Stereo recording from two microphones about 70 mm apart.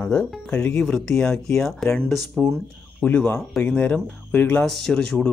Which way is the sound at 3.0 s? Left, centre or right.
Centre.